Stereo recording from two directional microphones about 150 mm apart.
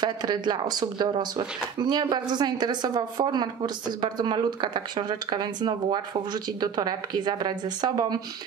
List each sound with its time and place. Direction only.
0.0 s a woman's voice: 30° right (ahead or behind)